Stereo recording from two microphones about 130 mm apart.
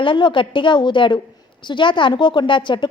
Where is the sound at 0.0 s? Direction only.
40° left (ahead or behind).